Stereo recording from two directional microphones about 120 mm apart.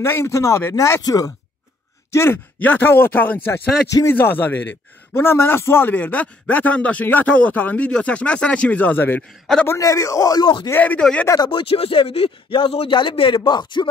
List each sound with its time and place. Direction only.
0.0 s a man's voice: 20° left (ahead or behind); by 10.7 s 40° left (ahead or behind)
10.7 s a man's voice: 15° left (ahead or behind)
11.2 s speech: 35° left (ahead or behind)
11.6 s speech: 50° left (ahead or behind)